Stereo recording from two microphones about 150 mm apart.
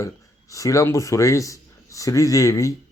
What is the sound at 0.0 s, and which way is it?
A man's voice, 20° left (ahead or behind).